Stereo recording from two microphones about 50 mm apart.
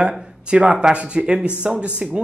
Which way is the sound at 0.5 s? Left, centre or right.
Right.